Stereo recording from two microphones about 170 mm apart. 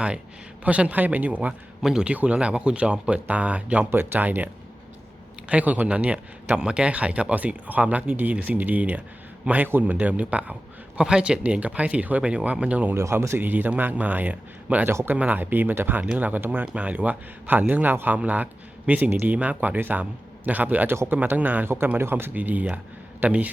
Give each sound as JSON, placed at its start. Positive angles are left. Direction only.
{"t": 0.6, "sound": "a man's voice", "side_deg": -10}
{"t": 5.5, "sound": "a man's voice", "side_deg": -10}